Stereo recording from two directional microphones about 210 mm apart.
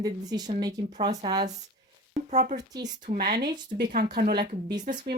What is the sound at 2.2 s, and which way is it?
Speech, 35° right (ahead or behind).